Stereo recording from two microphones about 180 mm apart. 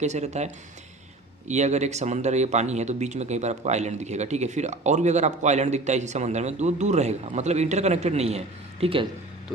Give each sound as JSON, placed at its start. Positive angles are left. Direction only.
{"t": 0.0, "sound": "speech", "side_deg": -40}
{"t": 9.5, "sound": "music", "side_deg": 0}